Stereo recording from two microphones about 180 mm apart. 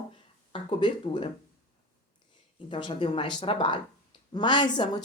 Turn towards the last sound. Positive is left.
turn(degrees=25)  # may be behind; listen again after turning